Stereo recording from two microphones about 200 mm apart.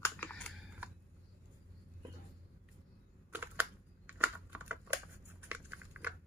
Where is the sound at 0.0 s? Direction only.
10° left (ahead or behind).